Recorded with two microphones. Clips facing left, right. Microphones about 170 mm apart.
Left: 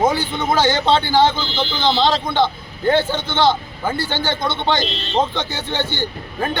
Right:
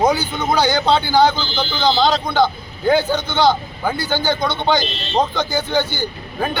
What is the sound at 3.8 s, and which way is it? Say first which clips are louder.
Speech: even; centre (ahead or behind).